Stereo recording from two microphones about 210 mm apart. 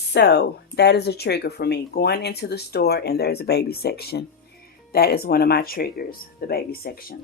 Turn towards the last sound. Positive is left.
turn(degrees=45)  # may be behind; listen again after turning